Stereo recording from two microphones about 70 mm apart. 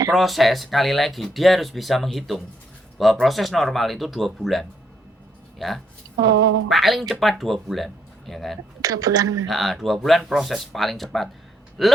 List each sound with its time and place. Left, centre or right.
0.1 s speech: centre
8.8 s a woman's voice: right
9.5 s speech: centre